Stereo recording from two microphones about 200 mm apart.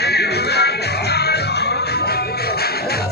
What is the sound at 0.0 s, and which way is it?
Music, 55° left (ahead or behind).